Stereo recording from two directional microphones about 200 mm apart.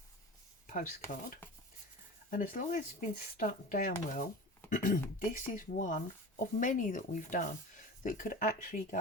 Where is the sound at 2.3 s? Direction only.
40° left (ahead or behind).